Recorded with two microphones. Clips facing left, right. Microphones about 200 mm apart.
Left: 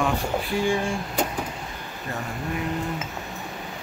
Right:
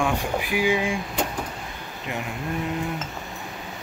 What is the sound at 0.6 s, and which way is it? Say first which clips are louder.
Speech: right 1 dB; 5° right (ahead or behind).